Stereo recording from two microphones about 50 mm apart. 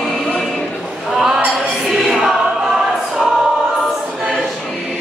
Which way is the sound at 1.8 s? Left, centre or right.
Centre.